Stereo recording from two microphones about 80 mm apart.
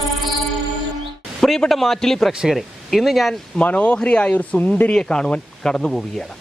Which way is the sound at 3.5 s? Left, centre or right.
Centre.